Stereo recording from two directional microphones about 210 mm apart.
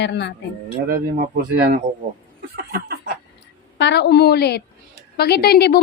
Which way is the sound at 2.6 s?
45° right (ahead or behind).